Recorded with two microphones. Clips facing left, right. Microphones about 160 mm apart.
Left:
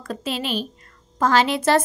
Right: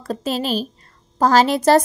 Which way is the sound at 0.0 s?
40° right (ahead or behind).